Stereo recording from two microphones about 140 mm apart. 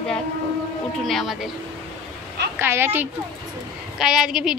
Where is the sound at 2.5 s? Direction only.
15° right (ahead or behind).